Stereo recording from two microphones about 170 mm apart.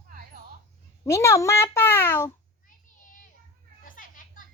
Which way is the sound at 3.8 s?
55° left (ahead or behind).